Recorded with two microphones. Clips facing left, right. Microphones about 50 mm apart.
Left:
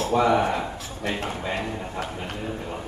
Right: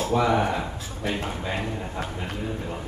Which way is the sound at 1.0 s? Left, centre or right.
Left.